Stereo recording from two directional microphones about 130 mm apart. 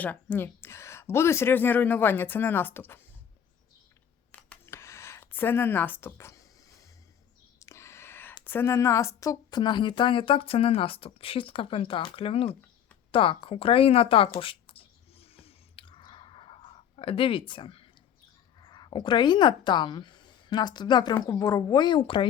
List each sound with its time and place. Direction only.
0.0 s speech: 15° left (ahead or behind)
4.3 s a sound: 10° left (ahead or behind)
7.6 s whispering: 20° left (ahead or behind)
8.4 s speech: 15° left (ahead or behind); by 14.3 s 45° left (ahead or behind)
14.3 s clicking: 45° left (ahead or behind)
18.6 s speech: 35° left (ahead or behind)